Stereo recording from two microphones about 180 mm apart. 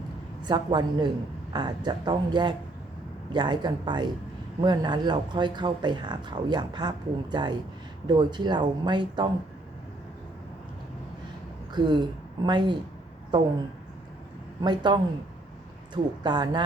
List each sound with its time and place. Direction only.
0.4 s speech: 25° right (ahead or behind)
11.7 s speech: 25° right (ahead or behind)
14.6 s speech: 25° right (ahead or behind)
16.2 s speech: 25° right (ahead or behind)